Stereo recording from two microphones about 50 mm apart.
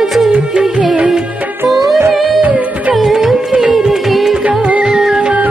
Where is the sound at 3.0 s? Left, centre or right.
Centre.